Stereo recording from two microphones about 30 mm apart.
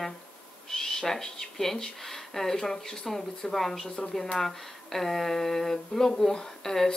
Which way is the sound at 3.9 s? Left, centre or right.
Left.